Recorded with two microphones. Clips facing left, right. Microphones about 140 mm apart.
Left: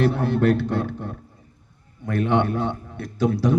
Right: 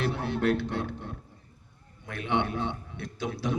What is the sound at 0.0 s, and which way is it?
A man's voice, 45° left (ahead or behind).